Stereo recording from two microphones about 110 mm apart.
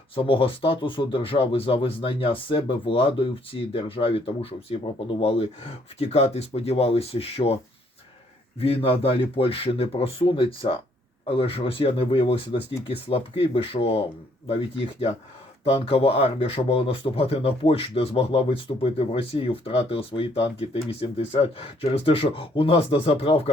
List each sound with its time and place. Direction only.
0.2 s speech: 55° left (ahead or behind)
6.0 s speech: 75° left (ahead or behind); by 14.0 s 60° left (ahead or behind)
15.6 s speech: 60° left (ahead or behind)